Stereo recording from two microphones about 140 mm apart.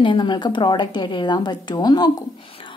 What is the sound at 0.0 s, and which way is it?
A woman's voice, 35° left (ahead or behind).